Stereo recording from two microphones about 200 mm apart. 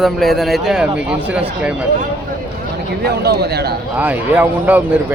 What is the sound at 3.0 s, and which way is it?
Speech, 55° right (ahead or behind).